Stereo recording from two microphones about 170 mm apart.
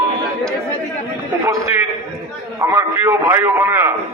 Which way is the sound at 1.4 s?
20° right (ahead or behind).